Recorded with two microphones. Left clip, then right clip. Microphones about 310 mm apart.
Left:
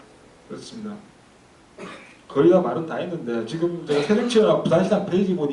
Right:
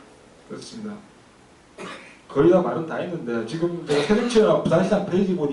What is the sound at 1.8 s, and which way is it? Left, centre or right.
A man's voice, centre.